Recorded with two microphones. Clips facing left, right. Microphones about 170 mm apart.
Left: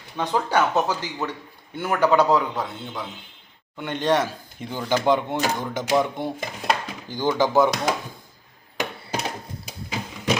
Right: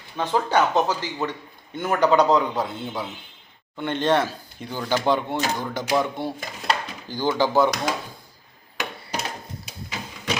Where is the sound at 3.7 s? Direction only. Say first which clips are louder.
Right 1 dB; 10° left (ahead or behind).